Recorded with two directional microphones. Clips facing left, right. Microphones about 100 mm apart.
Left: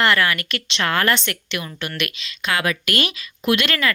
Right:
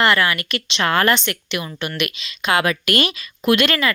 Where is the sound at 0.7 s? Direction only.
20° right (ahead or behind).